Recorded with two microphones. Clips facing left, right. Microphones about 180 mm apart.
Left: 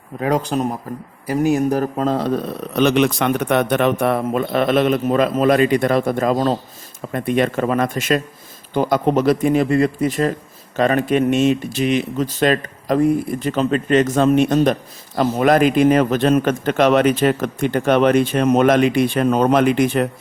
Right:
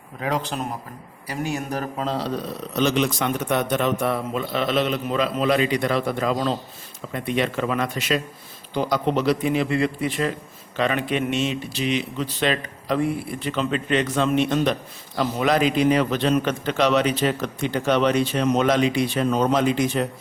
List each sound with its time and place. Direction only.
0.2 s speech: 45° left (ahead or behind)